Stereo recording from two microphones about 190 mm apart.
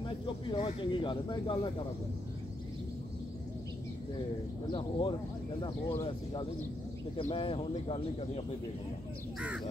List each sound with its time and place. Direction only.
0.5 s speech: 30° left (ahead or behind)
4.7 s speech: 25° left (ahead or behind)